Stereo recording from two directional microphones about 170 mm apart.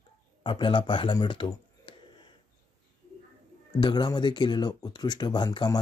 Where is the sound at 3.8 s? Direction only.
25° left (ahead or behind).